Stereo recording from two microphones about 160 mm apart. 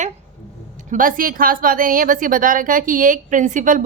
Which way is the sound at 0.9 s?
60° right (ahead or behind).